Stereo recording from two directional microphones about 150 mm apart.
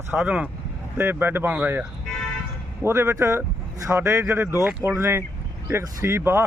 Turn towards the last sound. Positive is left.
turn(degrees=-15)  # may be behind; listen again after turning